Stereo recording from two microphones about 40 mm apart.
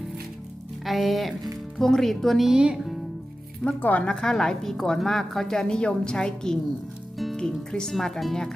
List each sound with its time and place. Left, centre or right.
0.9 s a woman's voice: centre
2.5 s speech: centre
3.8 s a woman's voice: left
4.0 s a woman's voice: left
7.7 s a woman's voice: centre
7.9 s a woman's voice: centre